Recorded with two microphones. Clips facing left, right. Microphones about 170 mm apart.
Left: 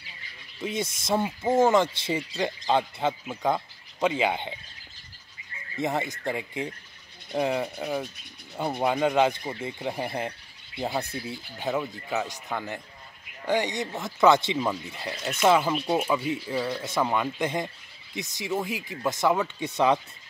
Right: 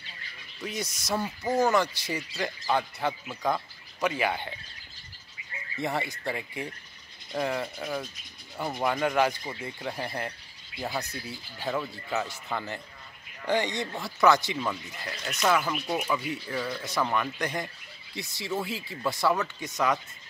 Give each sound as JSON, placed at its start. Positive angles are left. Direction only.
{"t": 0.6, "sound": "speech", "side_deg": 25}
{"t": 5.8, "sound": "speech", "side_deg": 20}
{"t": 19.6, "sound": "speech", "side_deg": 30}